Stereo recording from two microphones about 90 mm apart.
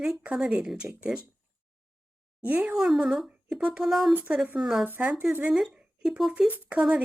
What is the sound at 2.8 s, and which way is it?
Speech, 5° right (ahead or behind).